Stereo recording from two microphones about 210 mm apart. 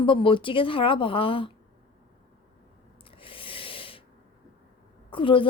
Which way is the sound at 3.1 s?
25° left (ahead or behind).